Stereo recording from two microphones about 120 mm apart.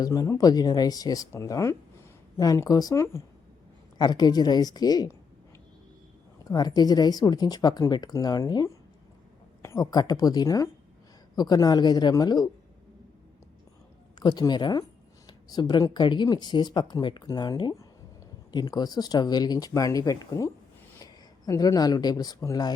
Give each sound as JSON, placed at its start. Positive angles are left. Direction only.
{"t": 0.0, "sound": "speech", "side_deg": 30}
{"t": 3.9, "sound": "speech", "side_deg": 35}
{"t": 6.4, "sound": "speech", "side_deg": 35}
{"t": 14.2, "sound": "speech", "side_deg": 35}